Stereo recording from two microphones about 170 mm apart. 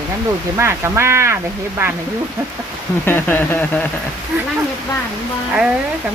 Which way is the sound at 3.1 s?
10° left (ahead or behind).